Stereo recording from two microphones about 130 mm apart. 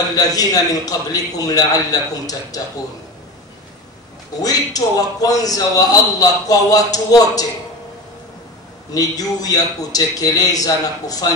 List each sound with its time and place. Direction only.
0.1 s a man's voice: 30° left (ahead or behind)
4.4 s a man's voice: 30° left (ahead or behind)
8.9 s a man's voice: 30° left (ahead or behind)